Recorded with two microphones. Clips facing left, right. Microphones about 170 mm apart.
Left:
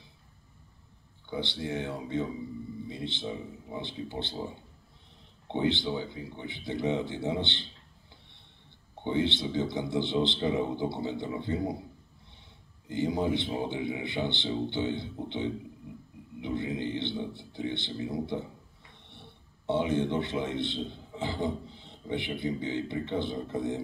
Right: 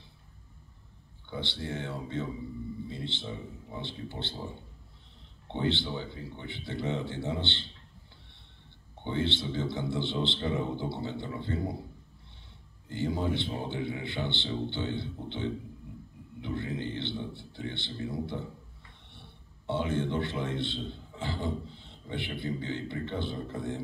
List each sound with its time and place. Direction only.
1.3 s a man's voice: 15° left (ahead or behind)
5.5 s a man's voice: 15° left (ahead or behind)
9.0 s a man's voice: 15° left (ahead or behind)
12.9 s a man's voice: 15° left (ahead or behind)
16.3 s a sound: 15° left (ahead or behind)
17.4 s a man's voice: 15° left (ahead or behind)